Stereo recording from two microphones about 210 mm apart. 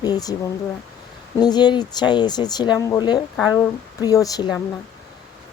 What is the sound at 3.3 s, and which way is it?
Speech, 5° right (ahead or behind).